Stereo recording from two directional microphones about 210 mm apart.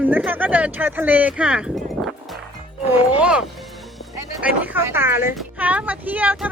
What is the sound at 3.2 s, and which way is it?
Speech, 5° right (ahead or behind).